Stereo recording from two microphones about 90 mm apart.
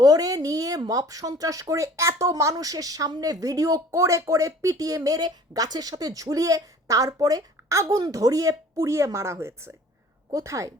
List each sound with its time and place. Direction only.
0.0 s speech: 45° right (ahead or behind)